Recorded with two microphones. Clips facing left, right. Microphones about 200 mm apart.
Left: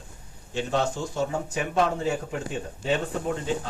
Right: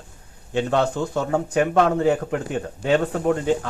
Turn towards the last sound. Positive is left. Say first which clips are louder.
# right 8 dB
turn(degrees=-60)  # may be behind; listen again after turning